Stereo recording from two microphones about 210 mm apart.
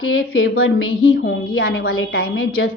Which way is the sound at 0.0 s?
85° left.